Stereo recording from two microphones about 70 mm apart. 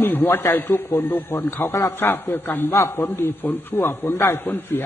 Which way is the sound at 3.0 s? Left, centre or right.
Left.